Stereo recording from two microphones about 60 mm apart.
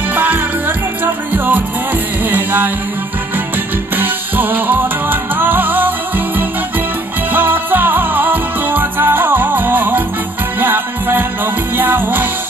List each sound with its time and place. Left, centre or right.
0.1 s music: right
3.9 s music: right